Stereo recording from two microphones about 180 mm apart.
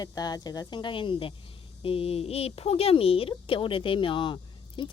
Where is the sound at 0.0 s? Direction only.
20° left (ahead or behind).